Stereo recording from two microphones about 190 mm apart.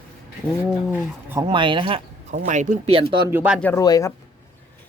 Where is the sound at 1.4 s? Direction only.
25° right (ahead or behind).